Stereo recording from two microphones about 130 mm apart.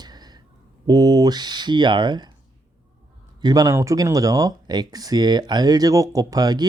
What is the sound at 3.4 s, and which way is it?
Speech, 30° right (ahead or behind).